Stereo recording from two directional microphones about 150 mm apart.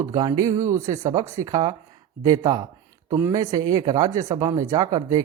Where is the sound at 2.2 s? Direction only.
25° right (ahead or behind).